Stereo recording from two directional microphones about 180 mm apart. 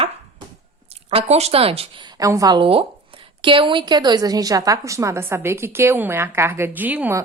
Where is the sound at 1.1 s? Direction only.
35° right (ahead or behind).